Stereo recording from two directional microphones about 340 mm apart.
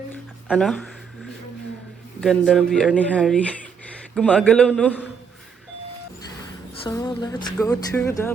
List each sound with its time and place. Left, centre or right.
0.1 s speech: centre
2.2 s speech: centre
6.8 s speech: centre